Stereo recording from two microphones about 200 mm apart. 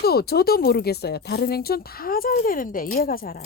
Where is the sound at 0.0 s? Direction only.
50° left (ahead or behind).